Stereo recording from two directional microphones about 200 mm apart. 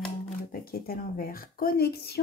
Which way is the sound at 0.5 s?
50° left (ahead or behind).